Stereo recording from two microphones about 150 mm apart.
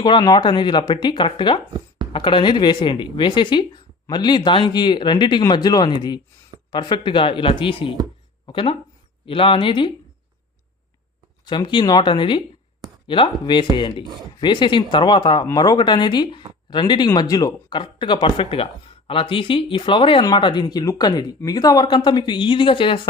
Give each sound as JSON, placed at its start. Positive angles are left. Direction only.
{"t": 0.0, "sound": "a man's voice", "side_deg": 30}
{"t": 11.4, "sound": "a man's voice", "side_deg": 30}